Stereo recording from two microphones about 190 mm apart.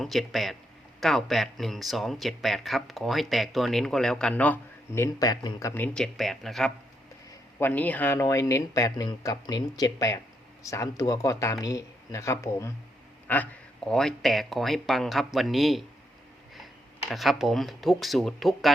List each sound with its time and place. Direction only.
0.0 s speech: centre (ahead or behind)
5.2 s speech: 20° left (ahead or behind); by 15.8 s centre (ahead or behind)
17.1 s speech: centre (ahead or behind)